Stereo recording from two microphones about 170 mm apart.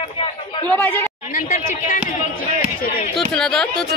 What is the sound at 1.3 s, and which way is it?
Speech, 50° left (ahead or behind).